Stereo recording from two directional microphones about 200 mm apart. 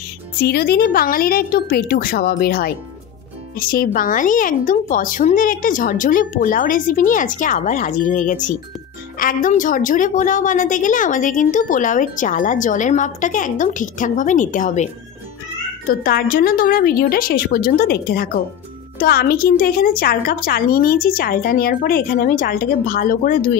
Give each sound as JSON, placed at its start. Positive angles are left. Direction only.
{"t": 0.4, "sound": "a woman's voice", "side_deg": 50}
{"t": 15.9, "sound": "a woman's voice", "side_deg": 45}